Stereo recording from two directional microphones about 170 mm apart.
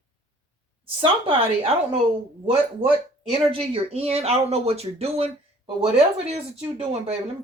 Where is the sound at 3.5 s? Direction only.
35° right (ahead or behind).